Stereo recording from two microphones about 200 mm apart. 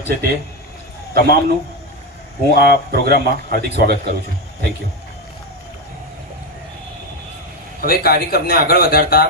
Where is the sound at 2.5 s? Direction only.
50° right (ahead or behind).